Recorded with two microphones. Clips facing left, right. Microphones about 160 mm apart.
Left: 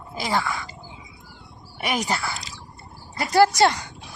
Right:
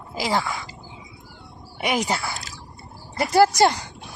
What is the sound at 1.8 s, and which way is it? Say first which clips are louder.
Speech: right 2 dB; 20° right (ahead or behind).